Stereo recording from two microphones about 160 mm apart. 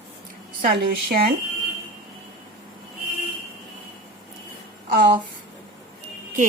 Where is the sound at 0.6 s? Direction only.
70° right (ahead or behind).